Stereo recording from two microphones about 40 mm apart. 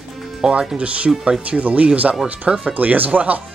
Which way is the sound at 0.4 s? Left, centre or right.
Right.